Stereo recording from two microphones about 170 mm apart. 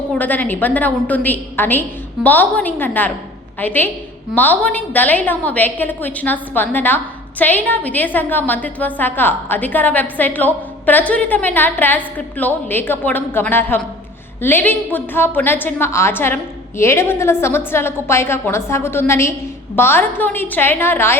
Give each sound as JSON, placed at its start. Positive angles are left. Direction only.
{"t": 0.1, "sound": "a woman's voice", "side_deg": 10}